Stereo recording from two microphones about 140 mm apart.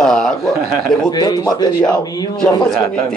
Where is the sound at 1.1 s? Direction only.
30° left (ahead or behind).